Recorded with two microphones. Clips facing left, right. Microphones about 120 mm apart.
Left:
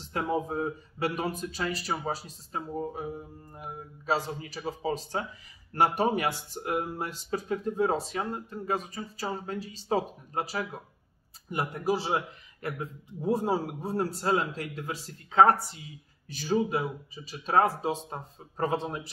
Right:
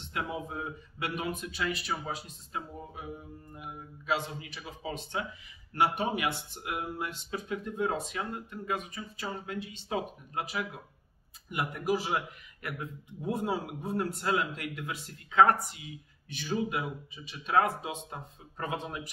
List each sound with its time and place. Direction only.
0.0 s a man's voice: 35° left (ahead or behind)